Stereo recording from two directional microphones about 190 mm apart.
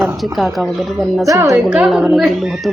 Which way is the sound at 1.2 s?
15° right (ahead or behind).